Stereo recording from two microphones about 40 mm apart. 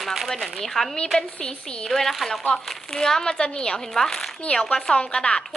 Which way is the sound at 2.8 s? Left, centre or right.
Centre.